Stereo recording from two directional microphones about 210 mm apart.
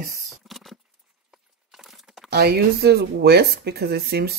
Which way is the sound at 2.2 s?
50° right (ahead or behind).